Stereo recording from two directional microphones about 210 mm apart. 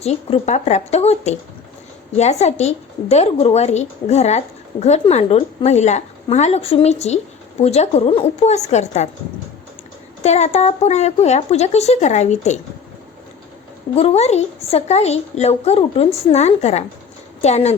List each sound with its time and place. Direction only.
0.0 s a woman's voice: 30° left (ahead or behind)
10.2 s a woman's voice: 30° left (ahead or behind)
13.9 s a woman's voice: 30° left (ahead or behind)